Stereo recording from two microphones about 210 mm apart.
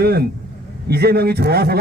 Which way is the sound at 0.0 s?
50° right (ahead or behind).